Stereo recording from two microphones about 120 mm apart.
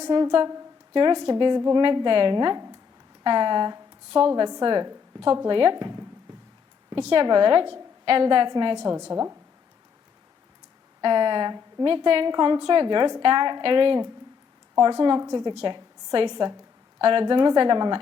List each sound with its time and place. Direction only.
0.0 s a woman's voice: 40° right (ahead or behind)
7.1 s a woman's voice: 40° right (ahead or behind); by 9.4 s 25° right (ahead or behind)
11.0 s a woman's voice: 40° right (ahead or behind)